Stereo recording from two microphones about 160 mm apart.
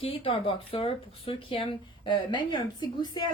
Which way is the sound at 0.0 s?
35° left (ahead or behind).